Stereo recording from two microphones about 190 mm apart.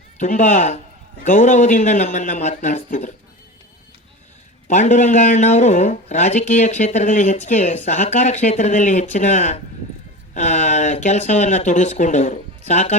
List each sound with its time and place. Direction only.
0.2 s speech: 40° left (ahead or behind)
4.7 s speech: 40° left (ahead or behind)